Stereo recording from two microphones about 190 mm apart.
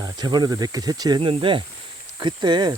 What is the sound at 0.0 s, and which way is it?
Speech, 20° right (ahead or behind).